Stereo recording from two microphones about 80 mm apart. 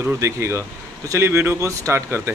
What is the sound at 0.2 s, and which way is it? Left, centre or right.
Speech, right.